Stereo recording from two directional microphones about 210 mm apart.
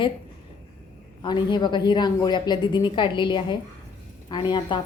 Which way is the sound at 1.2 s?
20° left (ahead or behind).